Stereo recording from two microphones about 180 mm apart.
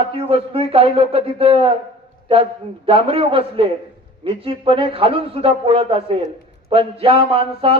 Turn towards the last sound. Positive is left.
turn(degrees=-30)  # may be behind; listen again after turning